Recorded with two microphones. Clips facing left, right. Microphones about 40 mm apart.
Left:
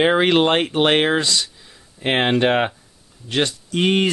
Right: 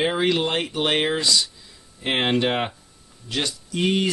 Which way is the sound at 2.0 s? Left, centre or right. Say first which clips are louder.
Left 4 dB; left.